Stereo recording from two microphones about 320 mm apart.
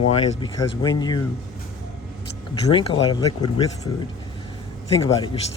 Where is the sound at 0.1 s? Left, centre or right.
Centre.